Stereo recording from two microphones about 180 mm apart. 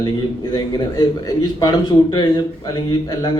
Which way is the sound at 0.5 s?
20° left (ahead or behind).